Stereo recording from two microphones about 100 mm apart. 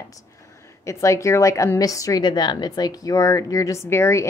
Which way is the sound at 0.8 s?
30° left (ahead or behind).